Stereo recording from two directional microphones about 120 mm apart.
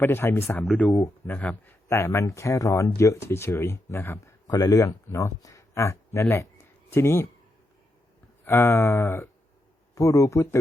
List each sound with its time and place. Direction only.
0.0 s speech: 20° left (ahead or behind)
8.4 s speech: 20° left (ahead or behind)